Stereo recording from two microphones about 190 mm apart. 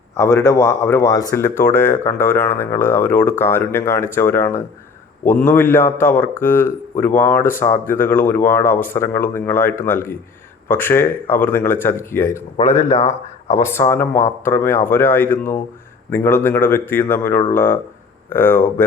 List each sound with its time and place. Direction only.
0.2 s a man's voice: 15° left (ahead or behind)
12.6 s speech: 35° left (ahead or behind)
13.5 s a man's voice: 15° left (ahead or behind)